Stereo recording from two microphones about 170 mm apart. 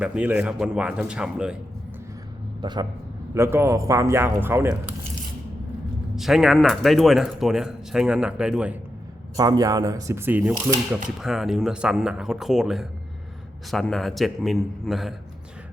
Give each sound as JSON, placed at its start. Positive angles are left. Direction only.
{"t": 0.0, "sound": "a man's voice", "side_deg": -5}
{"t": 2.6, "sound": "a man's voice", "side_deg": -25}
{"t": 3.3, "sound": "a man's voice", "side_deg": -15}
{"t": 6.1, "sound": "a man's voice", "side_deg": 0}
{"t": 9.3, "sound": "a man's voice", "side_deg": -20}